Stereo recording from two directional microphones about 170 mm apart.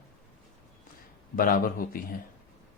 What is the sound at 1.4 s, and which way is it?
Speech, 55° left (ahead or behind).